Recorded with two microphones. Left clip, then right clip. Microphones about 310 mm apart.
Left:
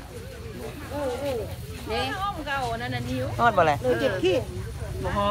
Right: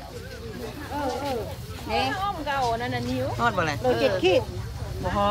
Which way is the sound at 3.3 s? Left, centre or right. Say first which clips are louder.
Left 6 dB; centre.